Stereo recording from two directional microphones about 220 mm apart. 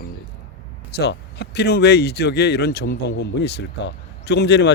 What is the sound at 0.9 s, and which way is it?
Speech, 50° left (ahead or behind).